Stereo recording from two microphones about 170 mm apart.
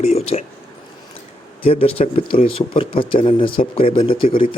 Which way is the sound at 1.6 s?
35° left (ahead or behind).